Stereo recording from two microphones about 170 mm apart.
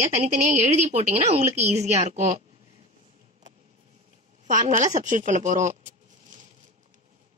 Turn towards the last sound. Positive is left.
turn(degrees=-45)  # may be behind; listen again after turning